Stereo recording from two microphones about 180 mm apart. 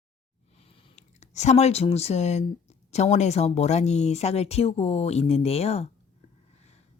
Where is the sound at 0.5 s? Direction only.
30° left (ahead or behind).